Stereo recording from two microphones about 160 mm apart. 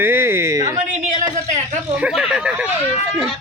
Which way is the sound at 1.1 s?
45° right (ahead or behind).